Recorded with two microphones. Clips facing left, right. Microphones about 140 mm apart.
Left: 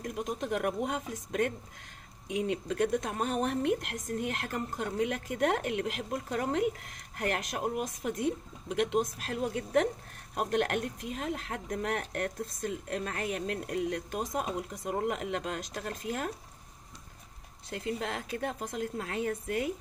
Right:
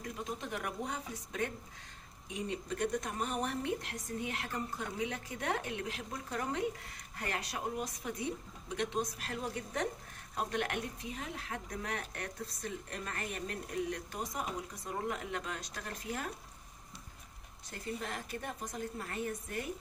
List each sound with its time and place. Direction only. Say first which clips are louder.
0.0 s speech: left 6 dB; 60° left (ahead or behind)
3.0 s speech: left 5 dB; 80° left
4.2 s speech: left 3 dB; 60° left (ahead or behind)
8.6 s speech: left 7 dB; 75° left (ahead or behind)
17.7 s speech: left 6 dB; 90° left